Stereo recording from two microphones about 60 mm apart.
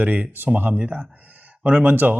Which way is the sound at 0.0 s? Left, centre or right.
Right.